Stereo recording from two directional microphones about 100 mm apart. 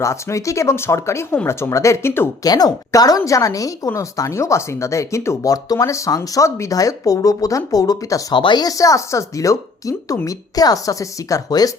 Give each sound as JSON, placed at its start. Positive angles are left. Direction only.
{"t": 0.0, "sound": "speech", "side_deg": 30}
{"t": 2.4, "sound": "speech", "side_deg": 40}